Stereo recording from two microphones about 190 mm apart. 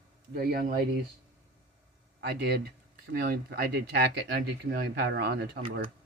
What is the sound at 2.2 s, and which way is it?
Speech, 55° right (ahead or behind).